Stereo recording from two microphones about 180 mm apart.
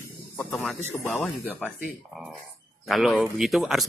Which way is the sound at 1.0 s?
10° left (ahead or behind).